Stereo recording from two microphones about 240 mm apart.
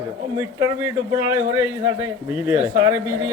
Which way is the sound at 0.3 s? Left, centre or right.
Centre.